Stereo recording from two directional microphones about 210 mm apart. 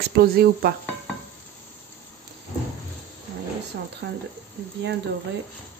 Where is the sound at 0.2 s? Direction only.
45° right (ahead or behind).